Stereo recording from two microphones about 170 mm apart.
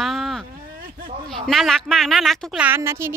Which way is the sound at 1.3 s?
Centre (ahead or behind).